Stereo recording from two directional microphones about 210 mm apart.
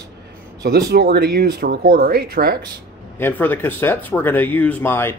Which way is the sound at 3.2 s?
10° left (ahead or behind).